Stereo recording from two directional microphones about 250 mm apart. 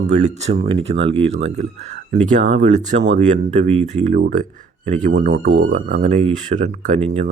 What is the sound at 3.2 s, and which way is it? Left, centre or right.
Speech, right.